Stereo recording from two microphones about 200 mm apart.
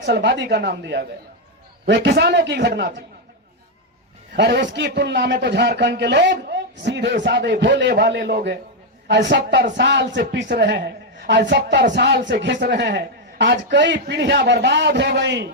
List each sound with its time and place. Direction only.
0.0 s a man's voice: 60° right (ahead or behind)
4.4 s a man's voice: 60° right (ahead or behind)